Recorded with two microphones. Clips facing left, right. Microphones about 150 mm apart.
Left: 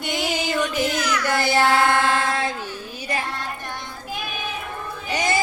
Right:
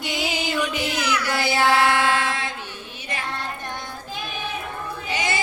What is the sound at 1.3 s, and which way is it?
Music, 45° left (ahead or behind).